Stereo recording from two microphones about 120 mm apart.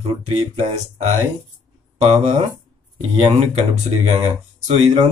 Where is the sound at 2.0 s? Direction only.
60° right (ahead or behind).